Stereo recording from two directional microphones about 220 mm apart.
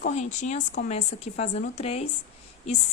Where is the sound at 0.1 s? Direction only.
30° left (ahead or behind).